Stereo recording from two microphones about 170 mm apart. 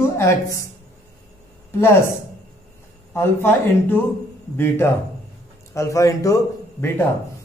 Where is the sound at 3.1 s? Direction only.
15° left (ahead or behind).